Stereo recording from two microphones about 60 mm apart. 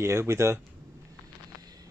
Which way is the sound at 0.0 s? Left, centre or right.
Right.